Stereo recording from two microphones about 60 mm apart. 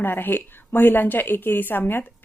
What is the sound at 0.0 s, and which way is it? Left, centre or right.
Speech, left.